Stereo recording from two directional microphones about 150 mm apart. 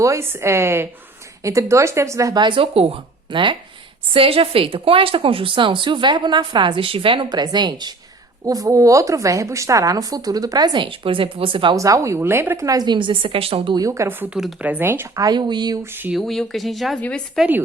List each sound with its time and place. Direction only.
0.0 s a woman's voice: 20° right (ahead or behind); by 11.8 s 35° right (ahead or behind)
11.8 s speech: 20° right (ahead or behind); by 13.7 s 40° right (ahead or behind)
13.7 s speech: 20° right (ahead or behind)
15.8 s a woman's voice: 15° right (ahead or behind)
16.1 s speech: centre (ahead or behind)